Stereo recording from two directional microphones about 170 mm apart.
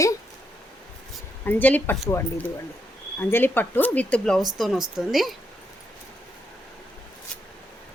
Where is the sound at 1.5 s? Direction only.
10° left (ahead or behind).